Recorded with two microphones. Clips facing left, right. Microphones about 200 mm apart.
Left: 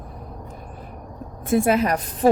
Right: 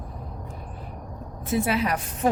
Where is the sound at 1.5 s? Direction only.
50° left (ahead or behind).